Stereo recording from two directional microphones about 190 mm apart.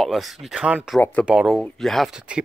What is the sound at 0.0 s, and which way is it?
Speech, centre (ahead or behind).